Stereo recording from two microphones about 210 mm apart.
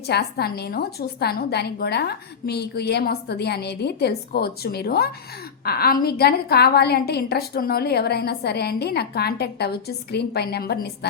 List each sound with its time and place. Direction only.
0.1 s a woman's voice: 50° left (ahead or behind)